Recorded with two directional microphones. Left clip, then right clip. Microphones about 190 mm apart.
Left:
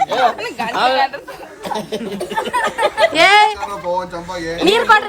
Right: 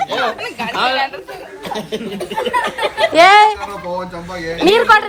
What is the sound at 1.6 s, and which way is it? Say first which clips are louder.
Speech: left 1 dB; 55° left (ahead or behind).